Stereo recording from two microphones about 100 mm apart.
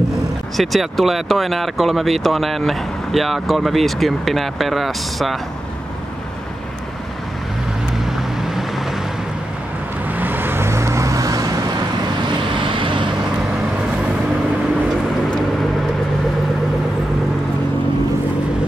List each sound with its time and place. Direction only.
0.6 s speech: centre (ahead or behind)
8.4 s boat: 5° right (ahead or behind)
10.0 s vehicle: 20° right (ahead or behind); by 11.6 s 35° right (ahead or behind)
12.3 s vehicle: 55° right (ahead or behind)